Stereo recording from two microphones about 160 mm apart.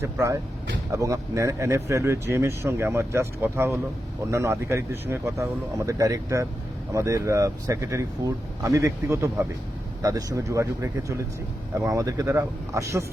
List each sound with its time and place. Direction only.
0.0 s speech: 15° right (ahead or behind)